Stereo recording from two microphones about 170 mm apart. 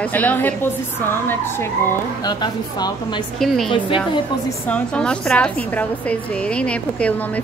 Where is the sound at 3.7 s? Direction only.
30° left (ahead or behind).